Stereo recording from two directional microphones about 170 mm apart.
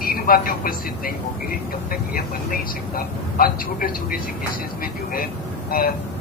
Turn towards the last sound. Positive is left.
turn(degrees=55)  # may be behind; listen again after turning